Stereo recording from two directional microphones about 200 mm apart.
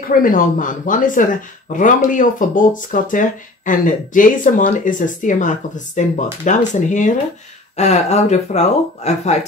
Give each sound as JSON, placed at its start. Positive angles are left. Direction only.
{"t": 0.1, "sound": "speech", "side_deg": 45}